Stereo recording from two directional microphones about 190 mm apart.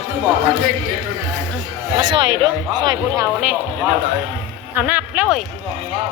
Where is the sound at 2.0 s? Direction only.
20° right (ahead or behind).